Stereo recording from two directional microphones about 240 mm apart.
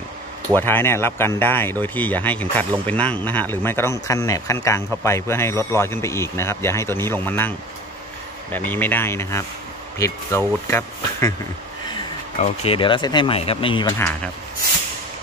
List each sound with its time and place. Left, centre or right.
0.6 s speech: centre